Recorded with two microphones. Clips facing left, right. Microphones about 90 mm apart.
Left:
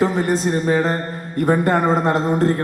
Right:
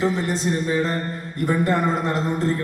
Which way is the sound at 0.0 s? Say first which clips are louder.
Left 4 dB; 45° left (ahead or behind).